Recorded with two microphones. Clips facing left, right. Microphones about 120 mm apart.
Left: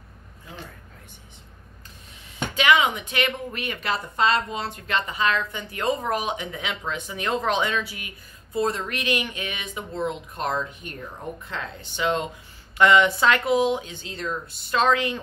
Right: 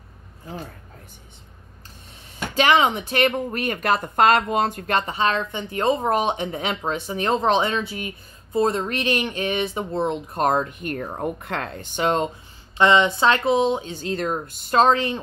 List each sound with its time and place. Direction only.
0.5 s speech: 40° right (ahead or behind)
2.5 s speech: 35° right (ahead or behind)
5.1 s speech: 30° right (ahead or behind)
10.4 s speech: 50° right (ahead or behind)
12.7 s speech: 25° right (ahead or behind)
14.0 s speech: 50° right (ahead or behind); by 15.1 s 35° right (ahead or behind)